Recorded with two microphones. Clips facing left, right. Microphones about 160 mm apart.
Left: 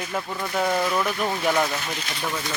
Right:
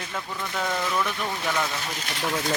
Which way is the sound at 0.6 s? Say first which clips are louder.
Left 4 dB; 20° left (ahead or behind).